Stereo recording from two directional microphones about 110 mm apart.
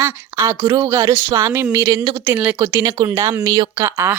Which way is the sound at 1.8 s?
45° right (ahead or behind).